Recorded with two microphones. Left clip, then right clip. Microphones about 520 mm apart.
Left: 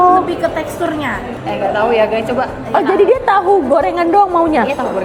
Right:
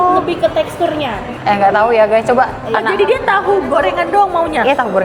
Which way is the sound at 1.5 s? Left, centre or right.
Right.